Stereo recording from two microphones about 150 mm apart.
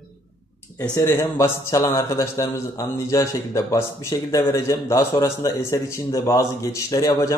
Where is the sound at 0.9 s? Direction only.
15° left (ahead or behind).